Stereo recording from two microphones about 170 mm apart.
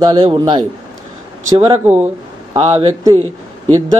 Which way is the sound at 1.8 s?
10° right (ahead or behind).